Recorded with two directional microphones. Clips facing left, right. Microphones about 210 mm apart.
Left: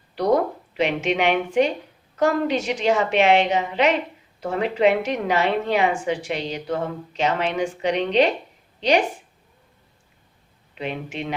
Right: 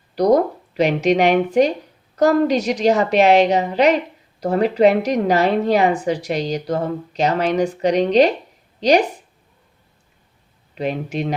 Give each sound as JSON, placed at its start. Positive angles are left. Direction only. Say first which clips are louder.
{"t": 0.2, "sound": "a woman's voice", "louder": "right 5 dB", "side_deg": -40}
{"t": 10.8, "sound": "a woman's voice", "louder": "right 6 dB", "side_deg": -40}